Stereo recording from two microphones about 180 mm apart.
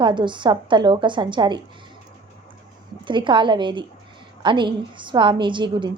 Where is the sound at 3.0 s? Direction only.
25° right (ahead or behind).